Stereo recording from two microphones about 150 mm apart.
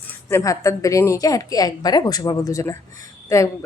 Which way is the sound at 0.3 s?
20° left (ahead or behind).